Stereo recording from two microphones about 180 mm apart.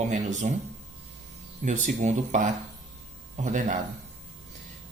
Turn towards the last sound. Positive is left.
turn(degrees=-45)  # may be behind; listen again after turning